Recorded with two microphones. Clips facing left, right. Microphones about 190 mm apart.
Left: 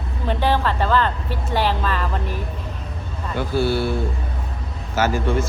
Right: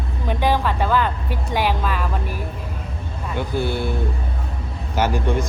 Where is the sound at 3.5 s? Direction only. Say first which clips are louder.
Left 4 dB; 20° right (ahead or behind).